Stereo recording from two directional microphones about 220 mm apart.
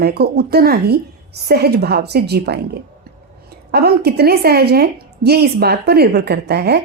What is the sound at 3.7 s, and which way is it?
A woman's voice, 45° right (ahead or behind).